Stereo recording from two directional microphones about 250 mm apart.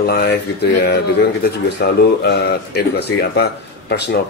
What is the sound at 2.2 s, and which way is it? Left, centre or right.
Speech, left.